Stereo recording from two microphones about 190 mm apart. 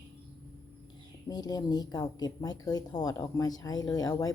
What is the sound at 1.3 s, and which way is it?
Speech, 20° left (ahead or behind).